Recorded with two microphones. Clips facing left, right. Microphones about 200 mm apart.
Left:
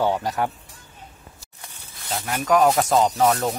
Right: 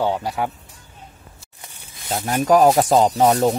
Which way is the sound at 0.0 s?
10° right (ahead or behind).